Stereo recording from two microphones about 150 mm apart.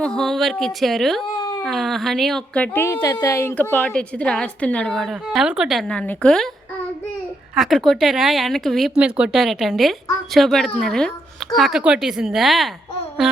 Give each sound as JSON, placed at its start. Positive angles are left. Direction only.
{"t": 0.0, "sound": "speech", "side_deg": 5}
{"t": 1.2, "sound": "a sound", "side_deg": 30}
{"t": 1.6, "sound": "speech", "side_deg": 0}
{"t": 2.7, "sound": "a woman's voice", "side_deg": 15}
{"t": 5.9, "sound": "a woman's voice", "side_deg": 5}
{"t": 7.5, "sound": "speech", "side_deg": 0}